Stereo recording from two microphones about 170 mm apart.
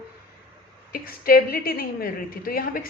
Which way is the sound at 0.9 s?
60° left (ahead or behind).